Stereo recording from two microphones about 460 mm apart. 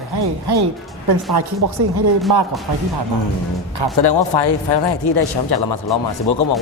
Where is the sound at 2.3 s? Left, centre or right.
Right.